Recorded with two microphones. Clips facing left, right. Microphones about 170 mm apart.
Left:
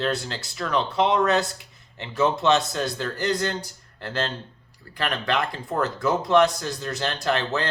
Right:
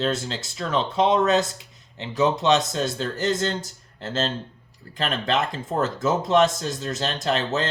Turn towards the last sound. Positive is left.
turn(degrees=-20)  # may be behind; listen again after turning